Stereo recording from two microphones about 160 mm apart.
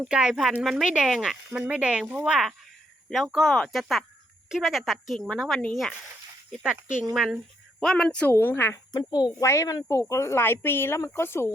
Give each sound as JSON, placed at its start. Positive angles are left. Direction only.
{"t": 0.0, "sound": "speech", "side_deg": -5}
{"t": 6.6, "sound": "speech", "side_deg": -5}
{"t": 8.9, "sound": "speech", "side_deg": 25}